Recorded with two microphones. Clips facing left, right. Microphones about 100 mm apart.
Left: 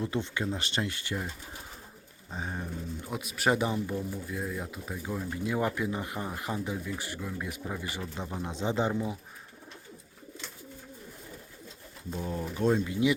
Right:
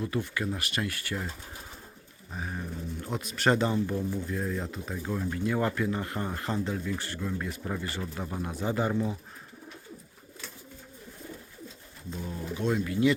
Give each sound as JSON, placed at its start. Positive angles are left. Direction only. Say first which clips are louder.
{"t": 0.0, "sound": "speech", "louder": "even", "side_deg": 25}
{"t": 2.3, "sound": "speech", "louder": "even", "side_deg": 25}
{"t": 3.0, "sound": "speech", "louder": "right 2 dB", "side_deg": 5}
{"t": 12.3, "sound": "speech", "louder": "left 3 dB", "side_deg": 40}
{"t": 12.8, "sound": "speech", "louder": "right 2 dB", "side_deg": 20}